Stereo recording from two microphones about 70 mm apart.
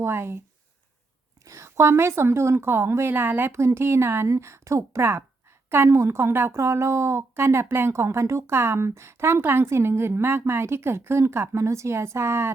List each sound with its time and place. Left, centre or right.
0.0 s a woman's voice: right
1.5 s a woman's voice: right